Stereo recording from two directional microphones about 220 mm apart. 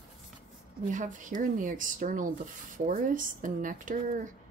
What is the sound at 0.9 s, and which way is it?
Speech, 35° right (ahead or behind).